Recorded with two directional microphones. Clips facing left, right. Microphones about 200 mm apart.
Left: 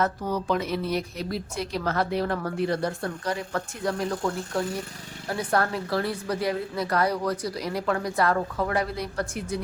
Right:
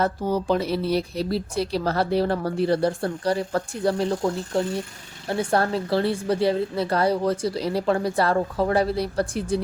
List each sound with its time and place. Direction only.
0.0 s a woman's voice: 30° right (ahead or behind)